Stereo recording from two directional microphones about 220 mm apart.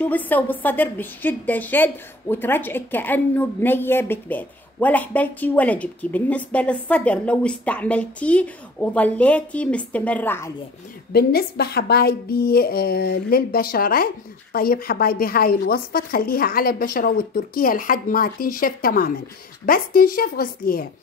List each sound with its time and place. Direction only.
0.0 s a woman's voice: 5° left (ahead or behind)
11.1 s a woman's voice: 45° left (ahead or behind)